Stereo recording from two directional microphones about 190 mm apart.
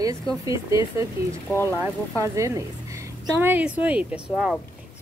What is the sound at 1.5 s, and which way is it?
Speech, 15° left (ahead or behind).